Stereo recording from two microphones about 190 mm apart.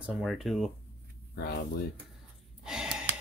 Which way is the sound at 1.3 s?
55° left (ahead or behind).